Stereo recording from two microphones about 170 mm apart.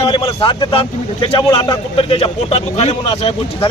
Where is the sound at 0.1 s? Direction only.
30° left (ahead or behind).